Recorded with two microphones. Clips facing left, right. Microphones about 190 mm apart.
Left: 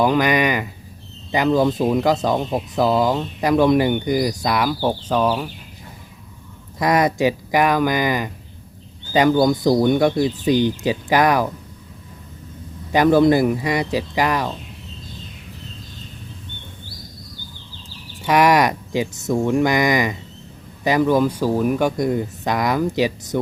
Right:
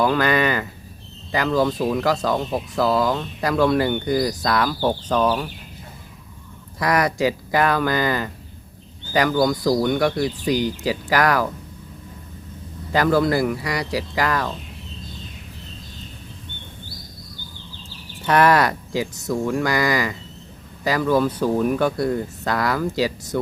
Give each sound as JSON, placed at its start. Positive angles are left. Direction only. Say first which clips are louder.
{"t": 0.0, "sound": "speech", "louder": "left 2 dB", "side_deg": 15}
{"t": 6.7, "sound": "speech", "louder": "left 3 dB", "side_deg": 20}
{"t": 12.9, "sound": "speech", "louder": "left 5 dB", "side_deg": 20}
{"t": 18.2, "sound": "speech", "louder": "left 1 dB", "side_deg": 10}